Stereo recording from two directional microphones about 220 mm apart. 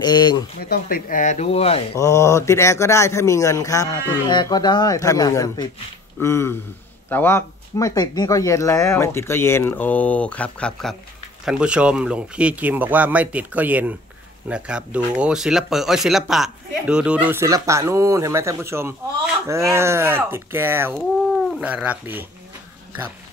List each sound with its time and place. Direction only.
0.0 s speech: 20° left (ahead or behind)
0.7 s speech: 40° left (ahead or behind)
2.0 s speech: 15° left (ahead or behind); by 22.2 s 5° right (ahead or behind)